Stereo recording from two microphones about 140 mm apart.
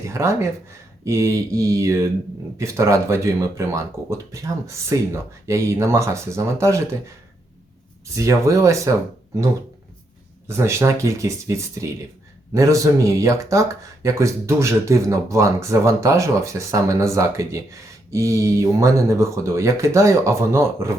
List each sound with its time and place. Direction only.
0.0 s speech: 20° right (ahead or behind)
8.1 s speech: 20° right (ahead or behind)
10.4 s speech: 20° right (ahead or behind)